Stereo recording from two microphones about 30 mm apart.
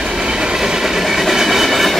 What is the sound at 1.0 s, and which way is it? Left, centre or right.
Train, centre.